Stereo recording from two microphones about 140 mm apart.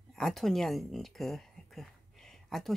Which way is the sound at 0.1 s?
Centre (ahead or behind).